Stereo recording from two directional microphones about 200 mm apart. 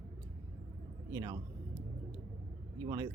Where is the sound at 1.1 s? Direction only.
20° right (ahead or behind).